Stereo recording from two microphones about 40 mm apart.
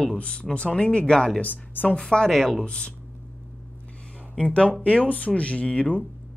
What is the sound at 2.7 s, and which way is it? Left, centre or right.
Speech, left.